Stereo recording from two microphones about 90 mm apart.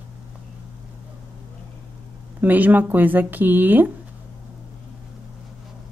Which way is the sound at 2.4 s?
20° right (ahead or behind).